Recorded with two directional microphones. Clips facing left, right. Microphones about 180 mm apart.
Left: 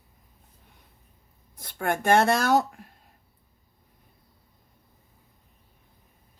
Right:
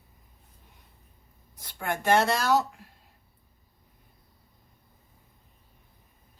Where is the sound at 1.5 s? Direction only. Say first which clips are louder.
Left 4 dB; 50° left (ahead or behind).